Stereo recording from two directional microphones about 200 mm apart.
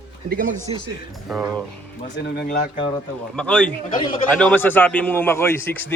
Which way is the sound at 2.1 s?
55° left (ahead or behind).